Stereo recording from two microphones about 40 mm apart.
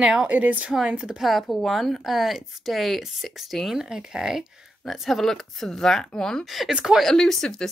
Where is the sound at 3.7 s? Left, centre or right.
Centre.